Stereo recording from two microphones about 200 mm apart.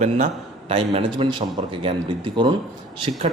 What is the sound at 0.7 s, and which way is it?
A man's voice, 30° right (ahead or behind).